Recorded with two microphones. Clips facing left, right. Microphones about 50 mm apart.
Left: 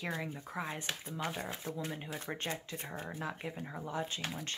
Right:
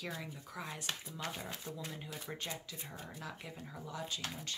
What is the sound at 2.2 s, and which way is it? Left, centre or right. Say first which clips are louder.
Speech: left 4 dB; left.